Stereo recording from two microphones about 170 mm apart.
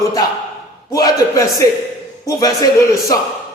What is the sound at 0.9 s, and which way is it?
A man's voice, 20° left (ahead or behind).